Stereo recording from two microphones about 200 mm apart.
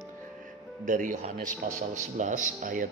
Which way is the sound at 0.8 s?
40° right (ahead or behind).